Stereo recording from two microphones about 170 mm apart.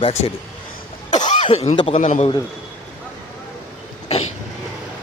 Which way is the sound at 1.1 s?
45° left (ahead or behind).